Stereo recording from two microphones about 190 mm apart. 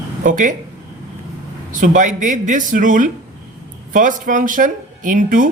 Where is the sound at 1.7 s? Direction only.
40° right (ahead or behind).